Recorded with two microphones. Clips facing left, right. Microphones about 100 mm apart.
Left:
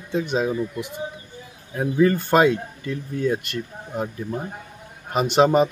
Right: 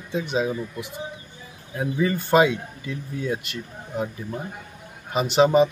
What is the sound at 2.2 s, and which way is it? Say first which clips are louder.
Speech: left 1 dB; centre (ahead or behind).